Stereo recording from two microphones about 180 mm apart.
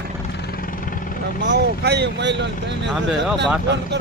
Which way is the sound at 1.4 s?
75° right (ahead or behind).